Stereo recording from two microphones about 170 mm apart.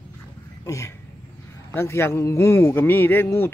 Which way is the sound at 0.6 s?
15° left (ahead or behind).